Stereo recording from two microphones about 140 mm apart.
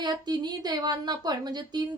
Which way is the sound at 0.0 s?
30° right (ahead or behind).